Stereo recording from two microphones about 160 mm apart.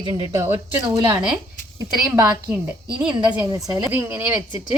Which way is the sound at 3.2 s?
10° right (ahead or behind).